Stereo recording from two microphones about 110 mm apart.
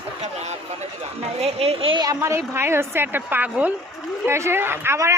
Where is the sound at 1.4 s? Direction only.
70° right (ahead or behind).